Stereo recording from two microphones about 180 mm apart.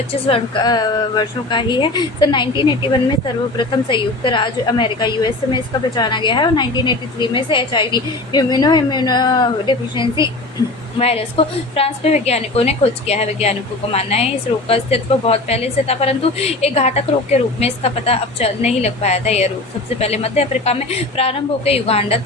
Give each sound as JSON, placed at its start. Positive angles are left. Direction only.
{"t": 0.3, "sound": "a woman's voice", "side_deg": 30}